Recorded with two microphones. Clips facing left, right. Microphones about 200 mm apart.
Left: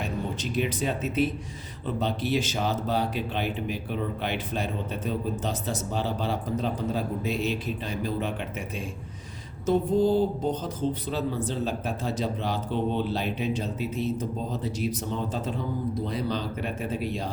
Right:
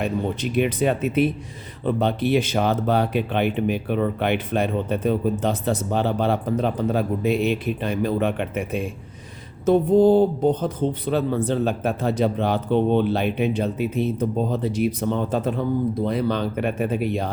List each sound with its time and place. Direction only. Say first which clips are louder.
0.5 s speech: right 7 dB; 60° right (ahead or behind)